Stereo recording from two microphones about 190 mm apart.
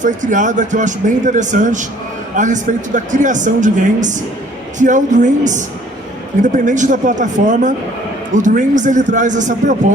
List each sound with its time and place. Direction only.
0.0 s speech: 40° right (ahead or behind)